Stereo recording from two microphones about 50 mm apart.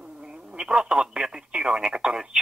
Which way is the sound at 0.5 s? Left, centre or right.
Centre.